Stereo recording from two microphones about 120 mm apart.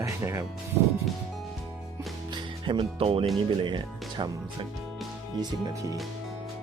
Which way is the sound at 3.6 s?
40° right (ahead or behind).